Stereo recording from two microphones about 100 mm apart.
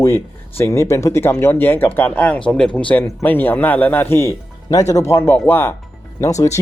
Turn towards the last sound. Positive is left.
turn(degrees=30)  # may be behind; listen again after turning